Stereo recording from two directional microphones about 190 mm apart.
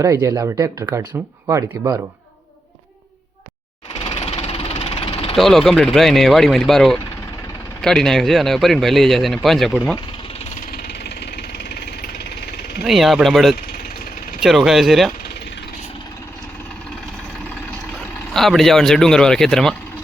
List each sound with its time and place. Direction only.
0.0 s speech: 15° right (ahead or behind)
4.0 s engine: 35° left (ahead or behind)
5.4 s speech: centre (ahead or behind)
10.3 s engine: 45° left (ahead or behind)
12.8 s speech: centre (ahead or behind)
13.6 s vehicle: 50° left (ahead or behind)
14.4 s speech: centre (ahead or behind)
18.3 s speech: centre (ahead or behind)